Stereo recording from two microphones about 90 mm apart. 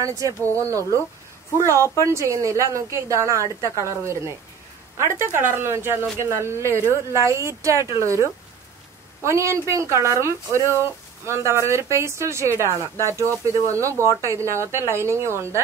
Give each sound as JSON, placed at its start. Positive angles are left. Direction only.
{"t": 0.0, "sound": "speech", "side_deg": -40}
{"t": 5.3, "sound": "speech", "side_deg": -30}